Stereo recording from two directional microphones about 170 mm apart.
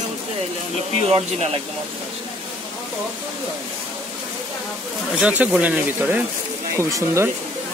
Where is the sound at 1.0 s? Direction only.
35° right (ahead or behind).